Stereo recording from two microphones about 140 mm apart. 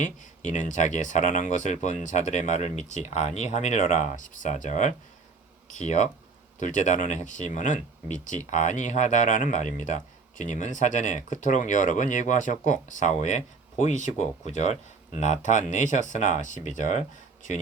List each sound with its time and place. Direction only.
0.0 s speech: 60° left (ahead or behind)